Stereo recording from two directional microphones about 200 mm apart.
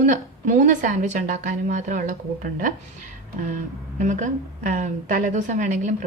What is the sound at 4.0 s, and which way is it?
A woman's voice, 35° right (ahead or behind).